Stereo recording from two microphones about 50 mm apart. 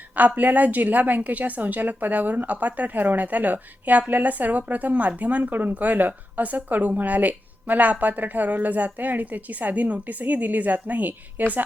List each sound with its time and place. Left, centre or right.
0.2 s speech: right